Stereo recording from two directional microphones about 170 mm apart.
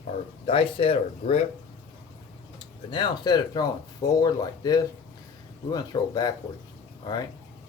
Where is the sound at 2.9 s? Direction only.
25° left (ahead or behind).